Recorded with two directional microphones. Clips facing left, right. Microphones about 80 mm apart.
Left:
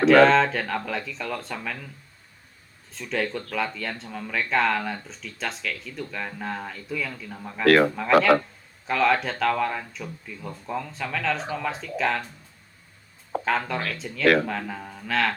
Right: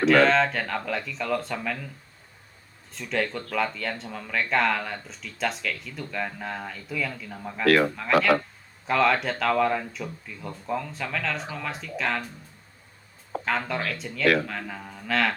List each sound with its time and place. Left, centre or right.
0.0 s speech: centre
2.9 s speech: centre
7.6 s a man's voice: left
7.9 s speech: centre
13.4 s speech: centre